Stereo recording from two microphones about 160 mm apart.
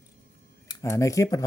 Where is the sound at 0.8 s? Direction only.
20° left (ahead or behind).